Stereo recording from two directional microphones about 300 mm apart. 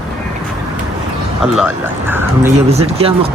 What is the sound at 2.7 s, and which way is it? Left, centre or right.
Speech, centre.